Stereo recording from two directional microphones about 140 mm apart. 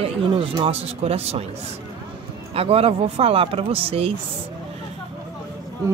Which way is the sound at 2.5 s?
45° right (ahead or behind).